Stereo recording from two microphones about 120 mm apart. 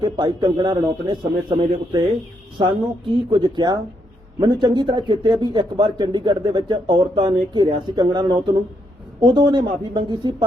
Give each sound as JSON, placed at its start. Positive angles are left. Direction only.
{"t": 0.0, "sound": "speech", "side_deg": -35}